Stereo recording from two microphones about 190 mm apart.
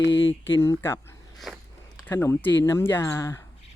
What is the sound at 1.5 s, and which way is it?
Speech, centre (ahead or behind).